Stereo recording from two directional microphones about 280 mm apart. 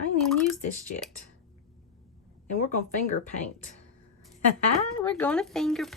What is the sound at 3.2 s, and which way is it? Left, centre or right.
Speech, left.